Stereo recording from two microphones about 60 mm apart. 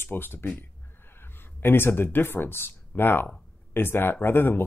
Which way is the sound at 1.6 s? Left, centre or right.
Left.